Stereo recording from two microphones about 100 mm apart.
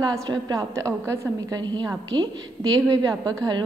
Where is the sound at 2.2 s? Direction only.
45° right (ahead or behind).